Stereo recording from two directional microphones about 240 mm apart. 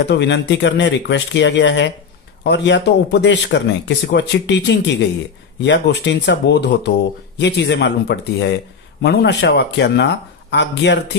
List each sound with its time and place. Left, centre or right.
0.0 s speech: left